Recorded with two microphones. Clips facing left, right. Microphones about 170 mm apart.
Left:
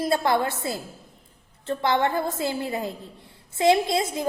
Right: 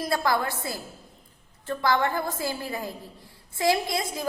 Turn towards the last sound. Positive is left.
turn(degrees=25)  # may be behind; listen again after turning